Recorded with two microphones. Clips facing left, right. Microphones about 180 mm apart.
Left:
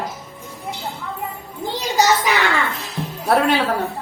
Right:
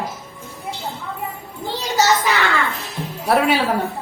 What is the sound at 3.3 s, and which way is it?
Speech, 5° right (ahead or behind).